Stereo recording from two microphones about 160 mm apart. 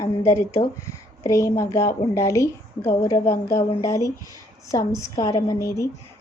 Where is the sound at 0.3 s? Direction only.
15° left (ahead or behind).